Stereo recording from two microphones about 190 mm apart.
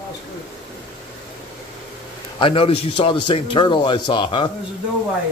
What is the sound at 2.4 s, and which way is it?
A man's voice, 30° left (ahead or behind).